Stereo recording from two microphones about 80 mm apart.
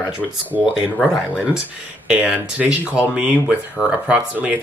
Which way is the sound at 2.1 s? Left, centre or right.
Centre.